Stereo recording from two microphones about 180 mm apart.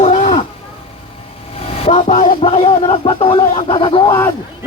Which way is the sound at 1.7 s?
35° left (ahead or behind).